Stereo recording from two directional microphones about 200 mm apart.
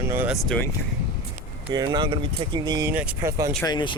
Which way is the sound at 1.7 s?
20° right (ahead or behind).